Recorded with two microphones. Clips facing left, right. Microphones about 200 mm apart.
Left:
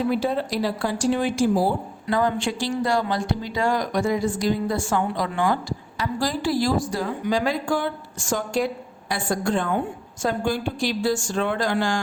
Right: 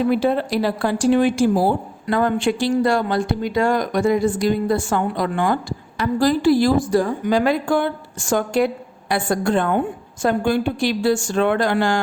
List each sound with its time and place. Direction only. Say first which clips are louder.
0.1 s speech: right 5 dB; 60° right (ahead or behind)